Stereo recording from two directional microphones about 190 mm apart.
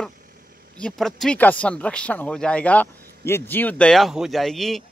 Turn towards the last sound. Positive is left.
turn(degrees=0)  # may be behind; listen again after turning